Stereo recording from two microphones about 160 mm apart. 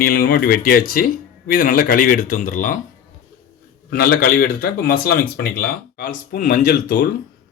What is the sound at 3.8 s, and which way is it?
Speech, 65° left (ahead or behind).